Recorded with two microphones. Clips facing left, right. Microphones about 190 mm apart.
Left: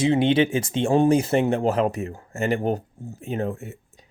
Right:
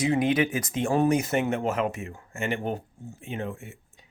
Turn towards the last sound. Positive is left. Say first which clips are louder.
# left 6 dB
turn(degrees=40)  # may be behind; listen again after turning